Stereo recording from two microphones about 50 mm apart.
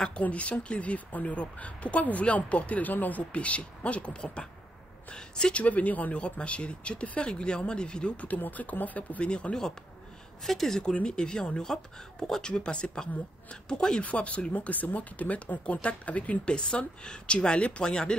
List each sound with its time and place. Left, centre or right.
0.2 s speech: left
8.4 s speech: left
9.3 s speech: centre
10.8 s speech: centre
14.0 s speech: left